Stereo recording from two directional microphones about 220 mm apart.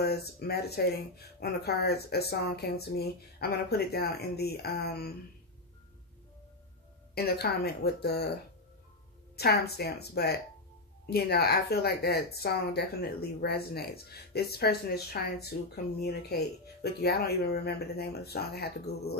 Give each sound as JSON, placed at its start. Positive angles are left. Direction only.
{"t": 0.0, "sound": "speech", "side_deg": 45}
{"t": 7.2, "sound": "speech", "side_deg": 45}
{"t": 9.4, "sound": "speech", "side_deg": 45}